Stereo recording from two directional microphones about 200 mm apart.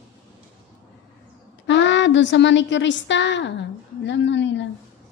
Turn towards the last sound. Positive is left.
turn(degrees=65)  # may be behind; listen again after turning